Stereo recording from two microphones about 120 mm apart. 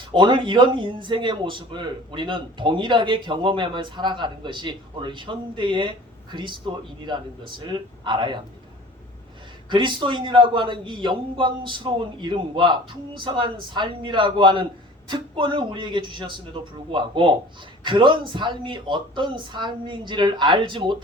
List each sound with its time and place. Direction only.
0.1 s a man's voice: 40° right (ahead or behind)
9.6 s a man's voice: 40° right (ahead or behind)